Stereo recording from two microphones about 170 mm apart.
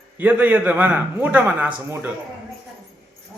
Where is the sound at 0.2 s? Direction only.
10° right (ahead or behind).